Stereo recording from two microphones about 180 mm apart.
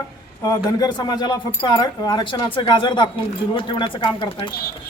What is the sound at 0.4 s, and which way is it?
Speech, 20° left (ahead or behind).